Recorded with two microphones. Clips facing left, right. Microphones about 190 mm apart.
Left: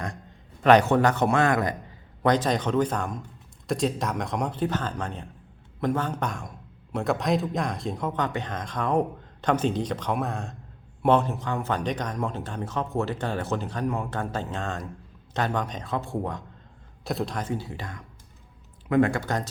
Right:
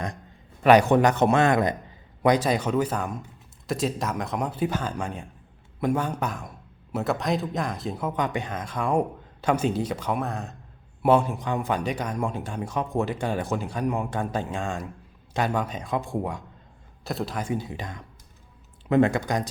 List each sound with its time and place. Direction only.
0.6 s a man's voice: 10° right (ahead or behind)
2.2 s a man's voice: 10° right (ahead or behind)
17.0 s a man's voice: centre (ahead or behind)